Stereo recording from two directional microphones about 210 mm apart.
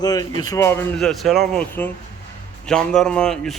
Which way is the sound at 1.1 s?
Centre (ahead or behind).